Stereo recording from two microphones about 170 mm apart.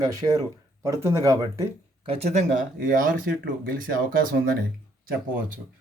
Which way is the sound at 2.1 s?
40° right (ahead or behind).